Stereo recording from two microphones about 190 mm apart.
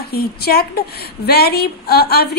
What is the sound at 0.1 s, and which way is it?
A woman's voice, 55° left (ahead or behind).